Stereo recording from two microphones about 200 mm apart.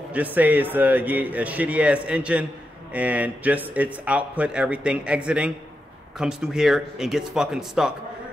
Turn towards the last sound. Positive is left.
turn(degrees=-5)  # may be behind; listen again after turning